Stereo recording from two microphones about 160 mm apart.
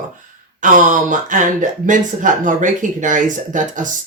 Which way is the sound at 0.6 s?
55° right (ahead or behind).